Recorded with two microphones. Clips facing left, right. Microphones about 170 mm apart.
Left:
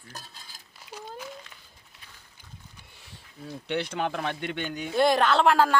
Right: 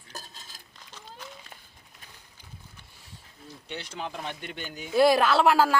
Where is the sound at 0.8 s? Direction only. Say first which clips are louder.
Left 9 dB; 5° left (ahead or behind).